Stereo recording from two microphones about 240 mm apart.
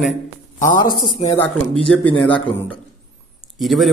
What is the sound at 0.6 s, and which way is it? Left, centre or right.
Speech, left.